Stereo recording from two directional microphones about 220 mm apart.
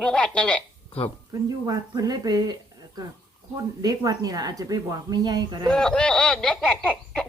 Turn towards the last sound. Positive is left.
turn(degrees=5)  # may be behind; listen again after turning